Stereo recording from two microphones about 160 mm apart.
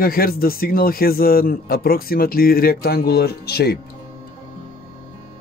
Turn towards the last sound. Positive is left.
turn(degrees=80)